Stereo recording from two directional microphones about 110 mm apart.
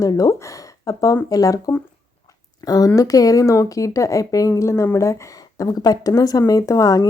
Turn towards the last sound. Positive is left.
turn(degrees=30)  # may be behind; listen again after turning